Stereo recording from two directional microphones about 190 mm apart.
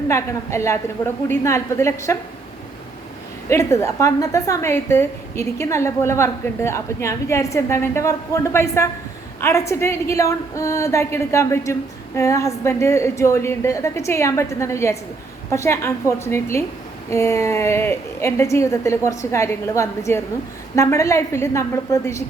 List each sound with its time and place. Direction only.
0.1 s a woman's voice: 15° left (ahead or behind)
3.5 s a woman's voice: 15° left (ahead or behind)